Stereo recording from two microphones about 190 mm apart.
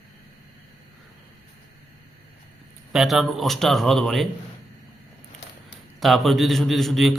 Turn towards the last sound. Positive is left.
turn(degrees=0)  # may be behind; listen again after turning